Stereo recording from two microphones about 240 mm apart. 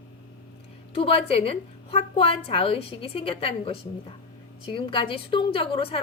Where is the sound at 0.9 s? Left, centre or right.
Left.